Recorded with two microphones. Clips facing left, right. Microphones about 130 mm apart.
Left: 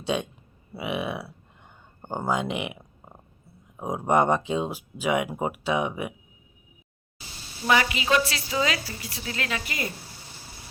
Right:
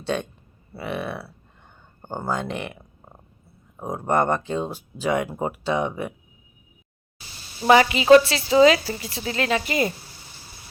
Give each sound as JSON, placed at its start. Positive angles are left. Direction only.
{"t": 0.0, "sound": "speech", "side_deg": 5}
{"t": 7.7, "sound": "a woman's voice", "side_deg": -30}